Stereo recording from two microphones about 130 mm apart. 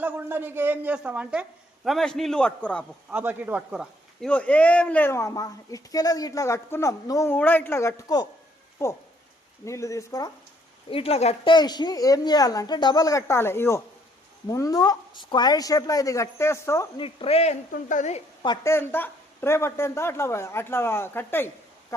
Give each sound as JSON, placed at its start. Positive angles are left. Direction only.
{"t": 0.0, "sound": "a man's voice", "side_deg": -15}
{"t": 3.1, "sound": "a man's voice", "side_deg": -15}
{"t": 4.3, "sound": "speech", "side_deg": 10}
{"t": 10.8, "sound": "speech", "side_deg": 45}
{"t": 11.4, "sound": "speech", "side_deg": 35}
{"t": 17.0, "sound": "speech", "side_deg": 50}
{"t": 17.7, "sound": "a woman's voice", "side_deg": 85}
{"t": 18.6, "sound": "speech", "side_deg": 20}